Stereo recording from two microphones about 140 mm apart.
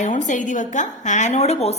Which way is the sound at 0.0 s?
60° left (ahead or behind).